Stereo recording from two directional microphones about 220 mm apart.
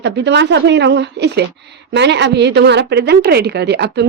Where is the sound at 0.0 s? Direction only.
50° right (ahead or behind).